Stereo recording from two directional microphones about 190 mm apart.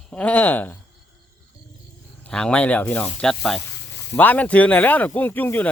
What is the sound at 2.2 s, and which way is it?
Speech, 5° left (ahead or behind).